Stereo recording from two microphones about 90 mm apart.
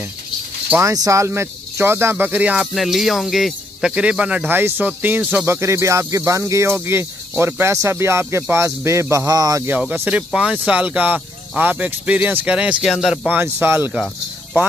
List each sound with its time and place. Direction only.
0.9 s speech: 40° right (ahead or behind); by 2.7 s 15° right (ahead or behind)
2.7 s speech: centre (ahead or behind); by 5.5 s 15° right (ahead or behind)
5.5 s speech: 30° right (ahead or behind)
9.1 s a man's voice: 45° right (ahead or behind)
9.7 s speech: 20° right (ahead or behind); by 13.3 s 5° right (ahead or behind)
13.3 s speech: 25° right (ahead or behind)